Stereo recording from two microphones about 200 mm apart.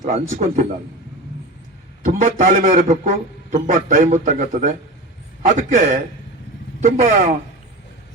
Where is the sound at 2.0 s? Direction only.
40° right (ahead or behind).